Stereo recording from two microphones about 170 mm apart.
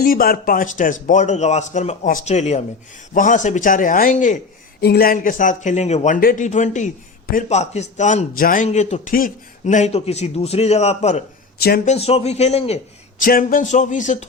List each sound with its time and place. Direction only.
0.0 s a man's voice: 55° left (ahead or behind)
4.8 s a man's voice: 70° left (ahead or behind); by 6.1 s 40° left (ahead or behind)
6.1 s a man's voice: 55° left (ahead or behind); by 13.2 s 40° left (ahead or behind)
13.2 s a man's voice: 55° left (ahead or behind)